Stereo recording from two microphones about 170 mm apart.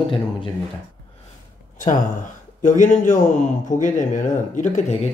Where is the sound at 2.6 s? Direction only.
50° left (ahead or behind).